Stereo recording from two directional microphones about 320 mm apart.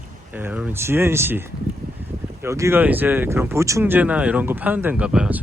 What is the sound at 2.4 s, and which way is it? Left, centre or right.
Speech, centre.